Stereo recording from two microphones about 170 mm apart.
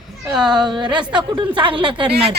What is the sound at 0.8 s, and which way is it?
A woman's voice, 25° right (ahead or behind).